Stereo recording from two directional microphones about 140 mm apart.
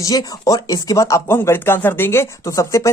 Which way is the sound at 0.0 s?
25° left (ahead or behind).